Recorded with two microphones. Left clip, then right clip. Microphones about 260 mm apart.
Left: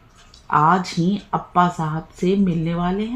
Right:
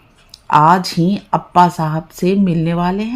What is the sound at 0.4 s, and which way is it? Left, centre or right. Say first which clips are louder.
Speech: right 6 dB; right.